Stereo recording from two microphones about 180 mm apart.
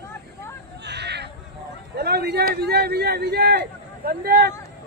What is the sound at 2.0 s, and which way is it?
A man's voice, 60° right (ahead or behind).